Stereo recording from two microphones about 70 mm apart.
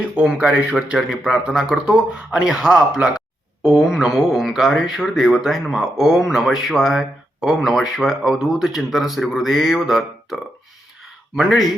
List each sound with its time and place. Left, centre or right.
0.2 s speech: centre
0.9 s speech: centre